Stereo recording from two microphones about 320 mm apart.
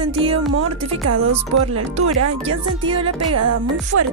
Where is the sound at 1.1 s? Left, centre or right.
Right.